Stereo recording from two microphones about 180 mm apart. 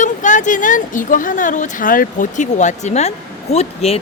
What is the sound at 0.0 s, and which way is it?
A woman's voice, 45° left (ahead or behind).